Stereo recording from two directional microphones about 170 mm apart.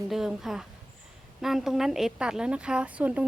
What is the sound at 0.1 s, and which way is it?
A woman's voice, centre (ahead or behind).